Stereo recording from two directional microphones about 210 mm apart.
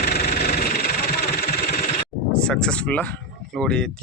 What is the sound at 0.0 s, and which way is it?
Engine, 45° left (ahead or behind).